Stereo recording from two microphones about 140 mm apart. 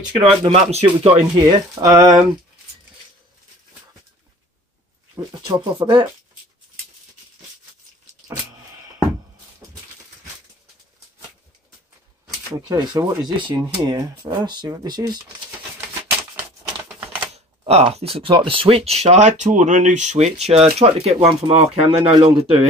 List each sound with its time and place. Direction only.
0.2 s speech: 45° right (ahead or behind)
1.8 s speech: 25° right (ahead or behind)
5.2 s speech: 30° right (ahead or behind)
12.5 s speech: 30° right (ahead or behind)
16.9 s typewriter: 10° right (ahead or behind)
17.3 s speech: 50° right (ahead or behind)